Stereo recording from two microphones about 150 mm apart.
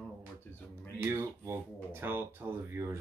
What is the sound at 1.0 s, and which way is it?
Speech, 15° right (ahead or behind).